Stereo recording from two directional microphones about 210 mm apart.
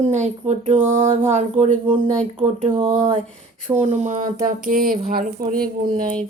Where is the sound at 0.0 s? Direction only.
35° right (ahead or behind).